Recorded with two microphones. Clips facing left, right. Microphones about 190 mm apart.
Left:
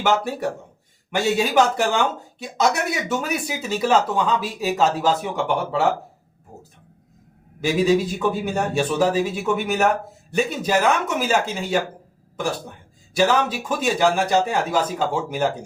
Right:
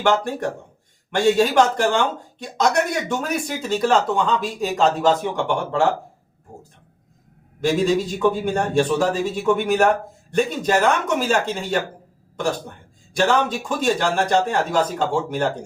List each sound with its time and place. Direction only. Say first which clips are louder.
0.0 s a man's voice: right 1 dB; 5° left (ahead or behind)
7.6 s a man's voice: even; 5° left (ahead or behind)
13.1 s speech: even; 5° left (ahead or behind)